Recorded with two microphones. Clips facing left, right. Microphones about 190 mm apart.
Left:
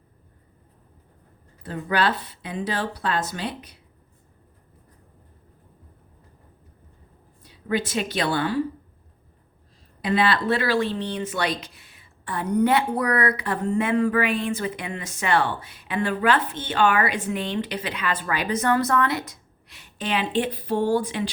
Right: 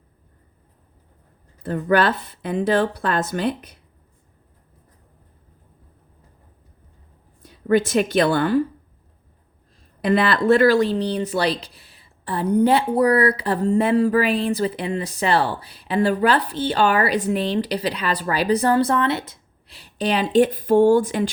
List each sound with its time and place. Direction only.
1.6 s a woman's voice: 50° right (ahead or behind)
7.4 s a woman's voice: 50° right (ahead or behind)
10.0 s speech: 50° right (ahead or behind)